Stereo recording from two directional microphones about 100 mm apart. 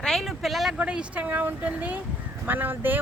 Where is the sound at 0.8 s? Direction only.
10° right (ahead or behind).